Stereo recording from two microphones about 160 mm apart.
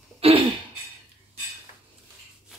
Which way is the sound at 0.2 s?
35° right (ahead or behind).